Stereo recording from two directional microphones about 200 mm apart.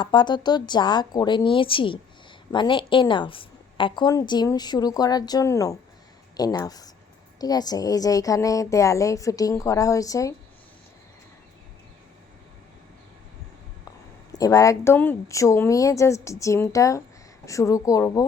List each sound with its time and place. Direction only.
0.0 s a woman's voice: 25° left (ahead or behind)
14.3 s a woman's voice: 15° left (ahead or behind)